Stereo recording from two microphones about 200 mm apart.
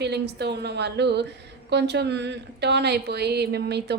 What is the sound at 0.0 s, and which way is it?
Speech, 55° right (ahead or behind).